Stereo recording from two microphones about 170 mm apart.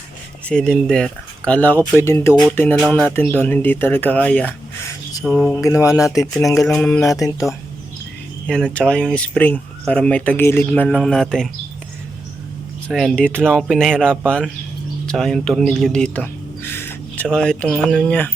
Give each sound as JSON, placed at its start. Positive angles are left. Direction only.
{"t": 0.4, "sound": "speech", "side_deg": 5}
{"t": 2.7, "sound": "speech", "side_deg": 0}
{"t": 3.1, "sound": "speech", "side_deg": 10}
{"t": 5.5, "sound": "mantra", "side_deg": 20}
{"t": 6.7, "sound": "speech", "side_deg": 5}
{"t": 7.0, "sound": "mantra", "side_deg": 20}
{"t": 8.4, "sound": "speech", "side_deg": 5}
{"t": 12.9, "sound": "speech", "side_deg": 5}
{"t": 15.0, "sound": "a sound", "side_deg": 5}
{"t": 17.2, "sound": "speech", "side_deg": 5}